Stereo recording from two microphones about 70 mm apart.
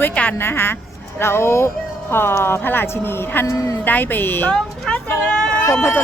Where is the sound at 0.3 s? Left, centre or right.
Left.